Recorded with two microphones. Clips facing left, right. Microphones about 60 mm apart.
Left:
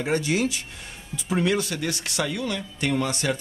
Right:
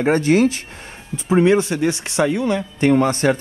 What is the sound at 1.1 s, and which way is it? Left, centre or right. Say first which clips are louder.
Speech: right 9 dB; right.